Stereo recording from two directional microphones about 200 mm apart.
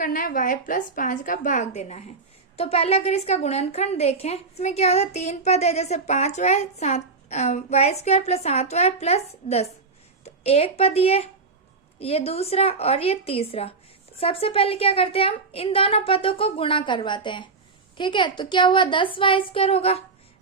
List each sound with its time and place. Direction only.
0.0 s a woman's voice: 45° left (ahead or behind)